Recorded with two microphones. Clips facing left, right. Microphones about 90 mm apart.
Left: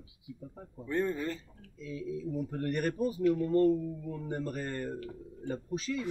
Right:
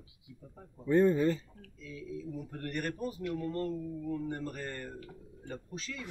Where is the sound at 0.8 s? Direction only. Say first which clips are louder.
Right 6 dB; 20° right (ahead or behind).